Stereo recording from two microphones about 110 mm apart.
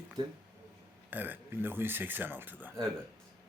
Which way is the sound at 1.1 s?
15° right (ahead or behind).